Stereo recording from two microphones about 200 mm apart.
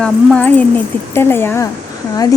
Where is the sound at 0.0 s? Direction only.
5° left (ahead or behind).